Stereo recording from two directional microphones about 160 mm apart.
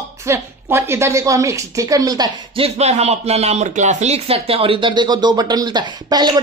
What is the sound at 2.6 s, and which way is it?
Speech, 40° right (ahead or behind).